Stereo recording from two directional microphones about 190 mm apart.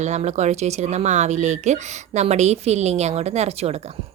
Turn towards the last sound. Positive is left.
turn(degrees=-35)  # may be behind; listen again after turning